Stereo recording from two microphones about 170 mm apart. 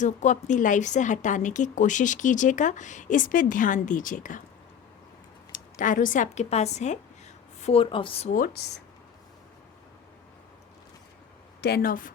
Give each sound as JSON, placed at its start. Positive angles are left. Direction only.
{"t": 0.0, "sound": "a woman's voice", "side_deg": 45}
{"t": 5.5, "sound": "a woman's voice", "side_deg": 50}
{"t": 8.3, "sound": "speech", "side_deg": 65}
{"t": 11.6, "sound": "speech", "side_deg": 65}